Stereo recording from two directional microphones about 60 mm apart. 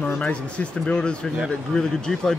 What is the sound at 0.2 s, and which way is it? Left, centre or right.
Speech, left.